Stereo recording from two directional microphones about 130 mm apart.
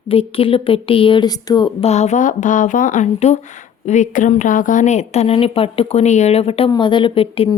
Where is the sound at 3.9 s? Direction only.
70° left (ahead or behind); by 6.7 s 50° left (ahead or behind).